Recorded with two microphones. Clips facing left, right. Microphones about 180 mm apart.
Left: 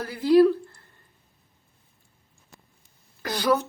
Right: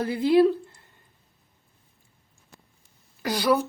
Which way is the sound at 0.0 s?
25° right (ahead or behind).